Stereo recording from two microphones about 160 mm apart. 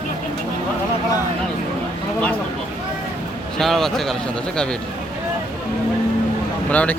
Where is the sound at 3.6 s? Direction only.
Centre (ahead or behind).